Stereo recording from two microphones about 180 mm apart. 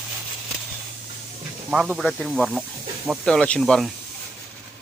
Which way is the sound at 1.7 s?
Centre (ahead or behind).